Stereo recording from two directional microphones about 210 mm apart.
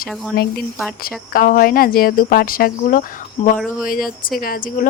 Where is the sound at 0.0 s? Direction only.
45° left (ahead or behind).